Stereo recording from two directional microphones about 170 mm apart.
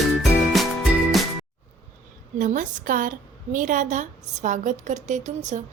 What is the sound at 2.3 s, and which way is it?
A woman's voice, 50° right (ahead or behind).